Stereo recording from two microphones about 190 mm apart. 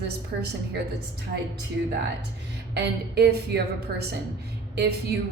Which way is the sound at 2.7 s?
60° right (ahead or behind).